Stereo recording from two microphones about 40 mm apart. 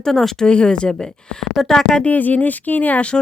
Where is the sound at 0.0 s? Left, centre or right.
Centre.